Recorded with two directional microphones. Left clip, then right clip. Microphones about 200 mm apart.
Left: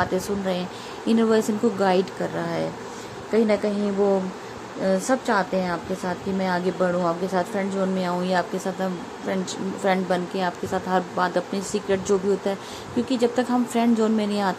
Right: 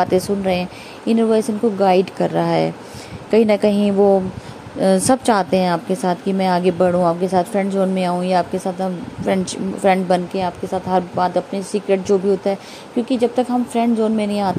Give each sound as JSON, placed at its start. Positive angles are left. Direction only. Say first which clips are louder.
{"t": 0.0, "sound": "a woman's voice", "louder": "right 7 dB", "side_deg": -25}
{"t": 2.4, "sound": "a woman's voice", "louder": "right 9 dB", "side_deg": -30}
{"t": 4.8, "sound": "a woman's voice", "louder": "right 7 dB", "side_deg": -35}